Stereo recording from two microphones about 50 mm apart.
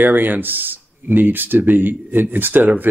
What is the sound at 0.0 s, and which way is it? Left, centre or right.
Speech, right.